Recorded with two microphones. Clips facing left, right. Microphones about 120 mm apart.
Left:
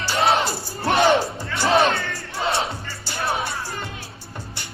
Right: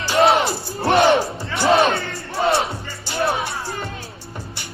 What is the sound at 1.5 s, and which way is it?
Music, 55° right (ahead or behind).